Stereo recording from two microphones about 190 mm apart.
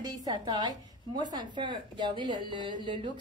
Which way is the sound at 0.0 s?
20° right (ahead or behind).